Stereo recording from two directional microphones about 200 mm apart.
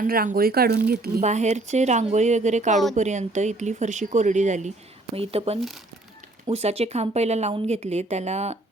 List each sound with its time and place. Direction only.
0.0 s speech: 45° right (ahead or behind)
1.2 s a woman's voice: 35° right (ahead or behind)